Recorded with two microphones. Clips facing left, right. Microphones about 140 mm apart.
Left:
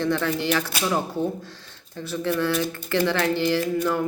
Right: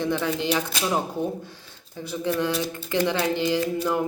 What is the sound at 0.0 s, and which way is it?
Speech, 15° right (ahead or behind).